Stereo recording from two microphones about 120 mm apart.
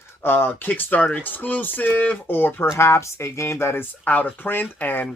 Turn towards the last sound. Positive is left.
turn(degrees=15)  # may be behind; listen again after turning